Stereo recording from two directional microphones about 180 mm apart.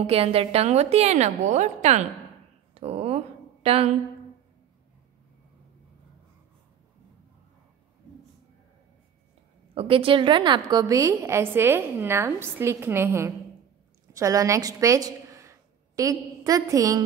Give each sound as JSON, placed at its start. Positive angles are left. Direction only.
{"t": 0.0, "sound": "a woman's voice", "side_deg": -30}
{"t": 2.7, "sound": "a sound", "side_deg": -35}
{"t": 9.8, "sound": "a woman's voice", "side_deg": -30}